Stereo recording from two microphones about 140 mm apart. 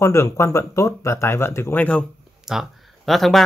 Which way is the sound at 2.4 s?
Centre (ahead or behind).